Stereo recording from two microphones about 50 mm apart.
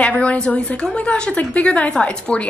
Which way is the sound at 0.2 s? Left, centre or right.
Left.